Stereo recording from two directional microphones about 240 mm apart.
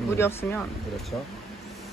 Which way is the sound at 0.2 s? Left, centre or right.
Centre.